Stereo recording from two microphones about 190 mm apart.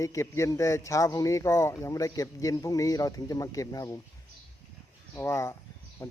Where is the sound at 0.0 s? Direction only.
15° left (ahead or behind).